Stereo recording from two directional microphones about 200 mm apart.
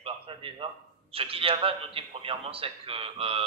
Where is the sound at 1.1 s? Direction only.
30° right (ahead or behind).